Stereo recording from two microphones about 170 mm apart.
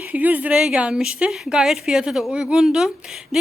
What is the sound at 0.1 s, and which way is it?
A woman's voice, 10° right (ahead or behind).